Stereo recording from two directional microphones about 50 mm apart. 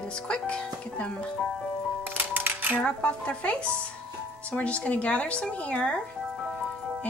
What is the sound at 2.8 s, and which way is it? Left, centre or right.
Speech, left.